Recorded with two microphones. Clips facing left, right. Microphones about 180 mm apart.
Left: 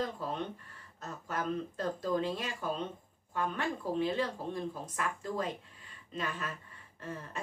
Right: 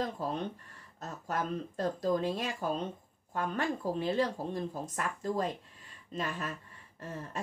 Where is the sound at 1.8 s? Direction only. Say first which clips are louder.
Right 4 dB; 40° right (ahead or behind).